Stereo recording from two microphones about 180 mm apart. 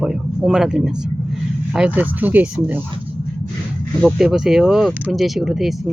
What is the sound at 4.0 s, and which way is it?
Speech, centre (ahead or behind).